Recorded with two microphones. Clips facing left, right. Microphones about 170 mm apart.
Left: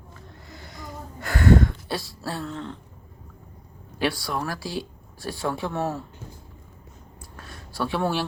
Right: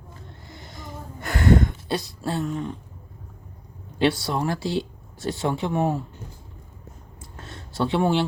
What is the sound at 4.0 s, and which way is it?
Speech, 20° right (ahead or behind).